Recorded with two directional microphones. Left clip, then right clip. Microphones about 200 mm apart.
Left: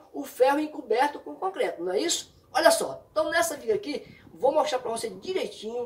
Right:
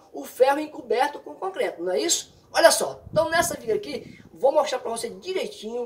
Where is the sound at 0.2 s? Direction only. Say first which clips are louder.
Right 2 dB; centre (ahead or behind).